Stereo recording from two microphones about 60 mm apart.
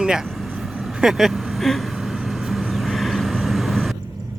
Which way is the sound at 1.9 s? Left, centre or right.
Centre.